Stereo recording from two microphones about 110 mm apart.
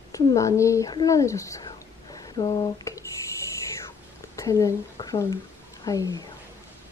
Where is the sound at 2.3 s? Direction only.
40° left (ahead or behind).